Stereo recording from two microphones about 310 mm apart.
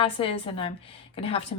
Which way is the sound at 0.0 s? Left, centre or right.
Centre.